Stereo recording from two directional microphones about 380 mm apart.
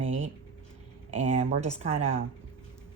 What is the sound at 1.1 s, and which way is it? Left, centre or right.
Speech, centre.